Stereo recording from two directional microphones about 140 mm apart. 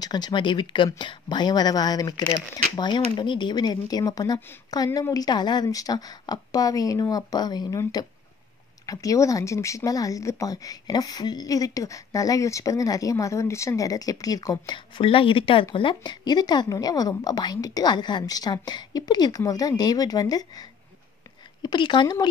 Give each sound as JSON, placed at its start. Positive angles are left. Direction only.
{"t": 0.0, "sound": "speech", "side_deg": 30}
{"t": 21.6, "sound": "speech", "side_deg": 35}